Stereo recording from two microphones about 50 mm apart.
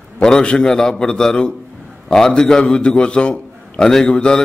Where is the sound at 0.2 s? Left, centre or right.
Centre.